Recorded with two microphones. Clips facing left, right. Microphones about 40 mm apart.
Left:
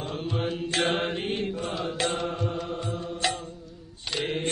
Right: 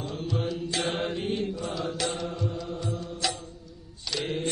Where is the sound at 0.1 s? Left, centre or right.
Left.